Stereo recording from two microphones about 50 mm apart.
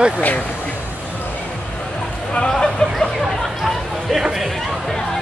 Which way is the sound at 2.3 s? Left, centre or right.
Centre.